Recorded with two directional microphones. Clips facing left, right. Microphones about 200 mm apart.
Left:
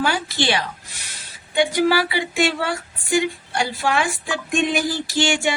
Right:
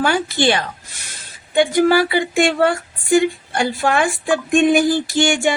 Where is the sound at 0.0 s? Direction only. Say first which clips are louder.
Right 5 dB; 50° right (ahead or behind).